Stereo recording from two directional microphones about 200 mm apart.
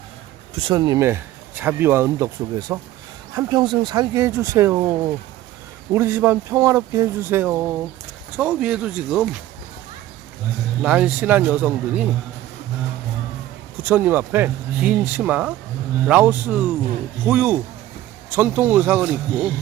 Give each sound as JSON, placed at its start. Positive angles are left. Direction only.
{"t": 0.5, "sound": "speech", "side_deg": -25}
{"t": 5.9, "sound": "speech", "side_deg": -10}
{"t": 10.8, "sound": "speech", "side_deg": -5}
{"t": 13.8, "sound": "speech", "side_deg": -10}